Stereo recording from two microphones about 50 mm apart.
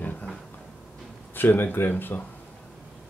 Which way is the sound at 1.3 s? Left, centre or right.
Left.